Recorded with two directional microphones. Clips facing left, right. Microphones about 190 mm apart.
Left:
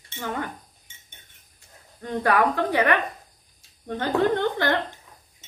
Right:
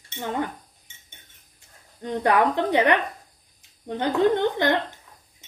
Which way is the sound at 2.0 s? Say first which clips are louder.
Right 1 dB; 20° right (ahead or behind).